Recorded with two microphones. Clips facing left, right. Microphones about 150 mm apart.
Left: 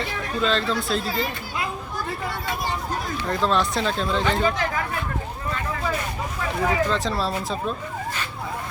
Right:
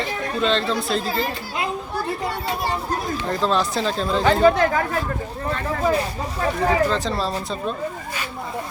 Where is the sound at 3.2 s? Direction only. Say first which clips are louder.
Even; centre (ahead or behind).